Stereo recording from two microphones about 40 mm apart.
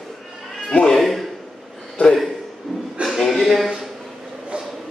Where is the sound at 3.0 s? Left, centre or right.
Right.